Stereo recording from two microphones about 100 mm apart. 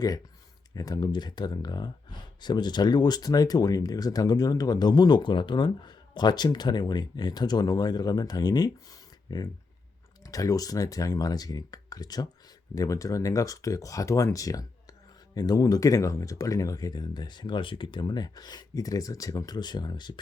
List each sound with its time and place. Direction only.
0.7 s speech: 40° left (ahead or behind)